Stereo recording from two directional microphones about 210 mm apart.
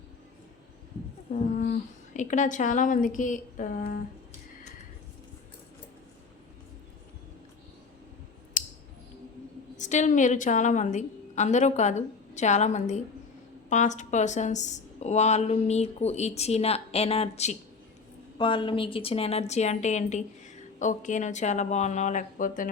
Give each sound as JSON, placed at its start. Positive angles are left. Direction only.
{"t": 1.5, "sound": "speech", "side_deg": 40}
{"t": 8.6, "sound": "scissors", "side_deg": 35}
{"t": 9.7, "sound": "a woman's voice", "side_deg": 35}